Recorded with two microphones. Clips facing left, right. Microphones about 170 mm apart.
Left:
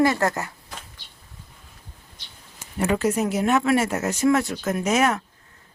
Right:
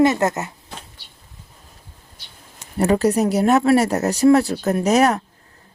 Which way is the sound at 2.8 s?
35° right (ahead or behind).